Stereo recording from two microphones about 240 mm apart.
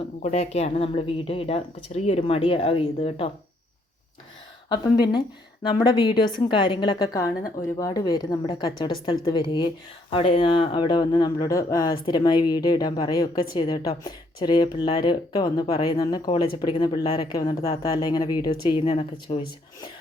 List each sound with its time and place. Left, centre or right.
0.2 s speech: left
4.7 s speech: centre